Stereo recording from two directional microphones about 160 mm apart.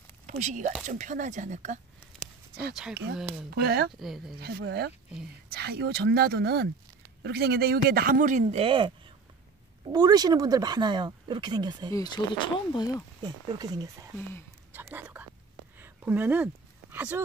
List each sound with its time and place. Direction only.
0.3 s speech: 50° right (ahead or behind)
2.2 s a sound: 5° left (ahead or behind)
2.7 s speech: 5° right (ahead or behind)
3.4 s speech: 80° right
4.0 s speech: centre (ahead or behind)
4.4 s speech: 85° right; by 8.9 s 35° right (ahead or behind)
9.9 s speech: 25° right (ahead or behind)
11.9 s speech: 25° left (ahead or behind)
13.2 s speech: 25° right (ahead or behind)
14.7 s whispering: 10° right (ahead or behind)
15.8 s a sound: 10° right (ahead or behind)
16.9 s speech: 10° right (ahead or behind)